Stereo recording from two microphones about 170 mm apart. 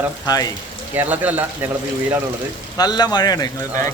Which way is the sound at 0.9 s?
10° right (ahead or behind).